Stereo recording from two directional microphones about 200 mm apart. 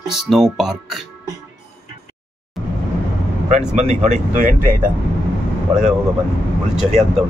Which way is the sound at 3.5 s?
35° right (ahead or behind).